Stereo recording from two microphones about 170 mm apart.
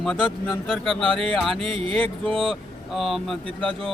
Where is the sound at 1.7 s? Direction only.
30° right (ahead or behind).